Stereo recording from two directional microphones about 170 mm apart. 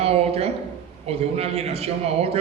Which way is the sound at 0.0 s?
35° right (ahead or behind).